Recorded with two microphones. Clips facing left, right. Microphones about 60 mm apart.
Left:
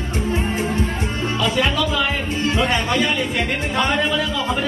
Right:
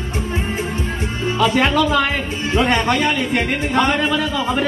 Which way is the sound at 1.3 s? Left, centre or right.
Right.